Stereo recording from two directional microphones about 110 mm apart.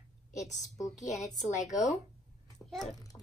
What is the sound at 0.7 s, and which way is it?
Speech, 30° left (ahead or behind).